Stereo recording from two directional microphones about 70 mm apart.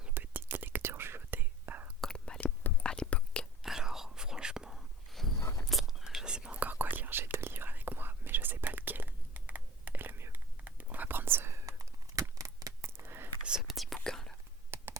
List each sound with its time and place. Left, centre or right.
0.1 s whispering: right
2.0 s whispering: centre
3.6 s whispering: centre
5.4 s walk: left
5.6 s whispering: centre
6.7 s whispering: right
11.6 s a sound: right
13.6 s whispering: centre
14.7 s a sound: right